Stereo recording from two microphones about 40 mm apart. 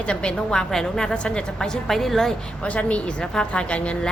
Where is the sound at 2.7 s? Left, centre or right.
Left.